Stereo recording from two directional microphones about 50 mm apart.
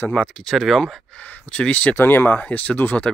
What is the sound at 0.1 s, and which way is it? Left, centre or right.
Speech, centre.